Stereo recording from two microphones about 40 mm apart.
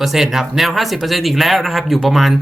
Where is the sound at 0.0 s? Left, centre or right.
Centre.